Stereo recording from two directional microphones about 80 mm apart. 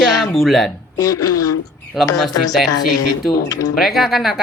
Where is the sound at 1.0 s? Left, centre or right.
Left.